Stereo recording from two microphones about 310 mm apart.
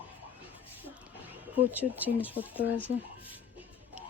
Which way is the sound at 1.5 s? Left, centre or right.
Centre.